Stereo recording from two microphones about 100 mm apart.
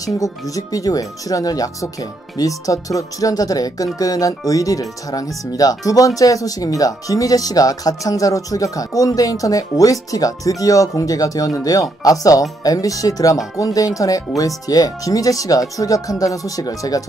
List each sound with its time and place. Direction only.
0.0 s speech: 35° left (ahead or behind)